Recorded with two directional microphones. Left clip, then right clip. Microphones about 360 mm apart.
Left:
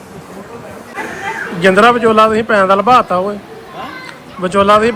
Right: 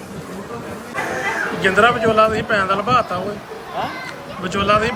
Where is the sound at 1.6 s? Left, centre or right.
Centre.